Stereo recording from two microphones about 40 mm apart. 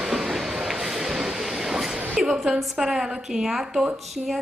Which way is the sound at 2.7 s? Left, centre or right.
Centre.